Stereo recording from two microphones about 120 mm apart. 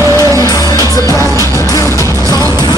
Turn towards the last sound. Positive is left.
turn(degrees=25)  # may be behind; listen again after turning